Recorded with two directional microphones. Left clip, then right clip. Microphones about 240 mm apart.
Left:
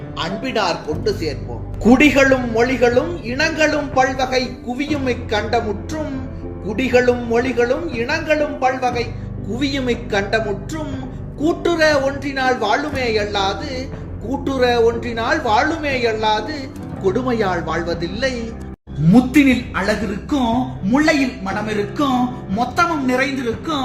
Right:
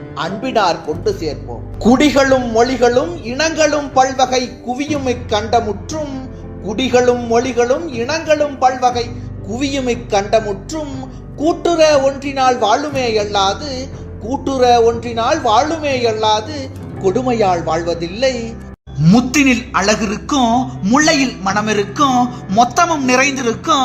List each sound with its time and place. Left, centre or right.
0.2 s a man's voice: centre
19.0 s a man's voice: right